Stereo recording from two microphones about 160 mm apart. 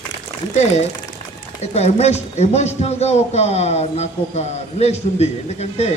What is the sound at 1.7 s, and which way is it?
A man's voice, 45° left (ahead or behind).